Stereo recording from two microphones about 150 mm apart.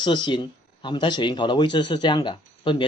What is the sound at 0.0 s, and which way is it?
Speech, 30° left (ahead or behind).